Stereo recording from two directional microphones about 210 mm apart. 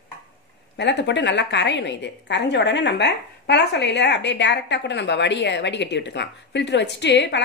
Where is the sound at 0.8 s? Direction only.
55° left (ahead or behind).